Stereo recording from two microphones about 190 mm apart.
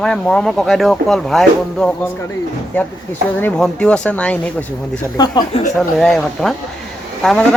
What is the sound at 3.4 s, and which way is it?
Speech, 5° left (ahead or behind).